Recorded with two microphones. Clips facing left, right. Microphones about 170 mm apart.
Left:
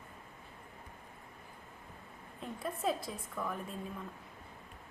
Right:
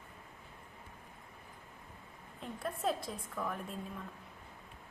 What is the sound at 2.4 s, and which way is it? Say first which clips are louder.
A woman's voice: even; centre (ahead or behind).